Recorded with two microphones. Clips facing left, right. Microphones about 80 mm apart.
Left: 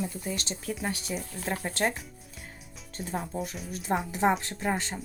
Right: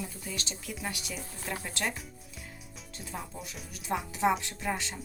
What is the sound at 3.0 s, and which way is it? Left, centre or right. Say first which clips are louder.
A woman's voice: left 8 dB; left.